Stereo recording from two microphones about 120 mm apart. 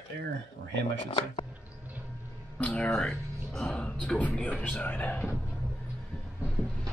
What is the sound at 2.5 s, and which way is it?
Speech, 10° left (ahead or behind).